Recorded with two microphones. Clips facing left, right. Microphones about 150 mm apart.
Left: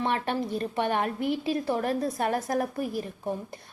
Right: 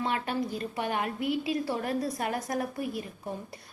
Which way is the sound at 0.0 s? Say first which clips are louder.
Left 2 dB; 30° left (ahead or behind).